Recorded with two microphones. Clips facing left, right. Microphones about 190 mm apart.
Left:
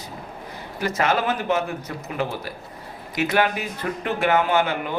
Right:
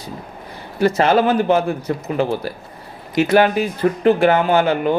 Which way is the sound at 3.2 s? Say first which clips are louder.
Right 8 dB; 30° right (ahead or behind).